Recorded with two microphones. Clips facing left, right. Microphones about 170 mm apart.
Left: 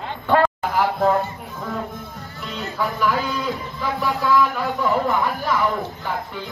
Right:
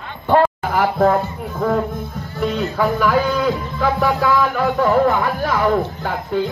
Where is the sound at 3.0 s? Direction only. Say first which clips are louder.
Right 4 dB; 90° right.